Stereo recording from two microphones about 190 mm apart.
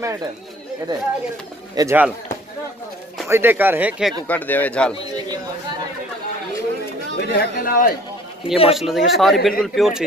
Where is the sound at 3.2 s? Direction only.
10° right (ahead or behind).